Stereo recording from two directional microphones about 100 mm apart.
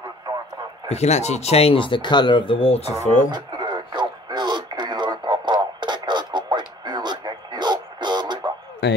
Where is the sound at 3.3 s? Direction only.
45° right (ahead or behind).